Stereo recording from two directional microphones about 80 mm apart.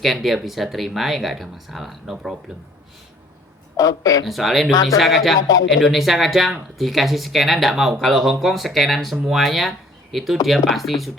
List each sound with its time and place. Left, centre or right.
0.0 s speech: centre
3.8 s speech: left
4.3 s speech: centre
4.7 s speech: left
4.9 s speech: centre
5.4 s speech: left
5.7 s speech: centre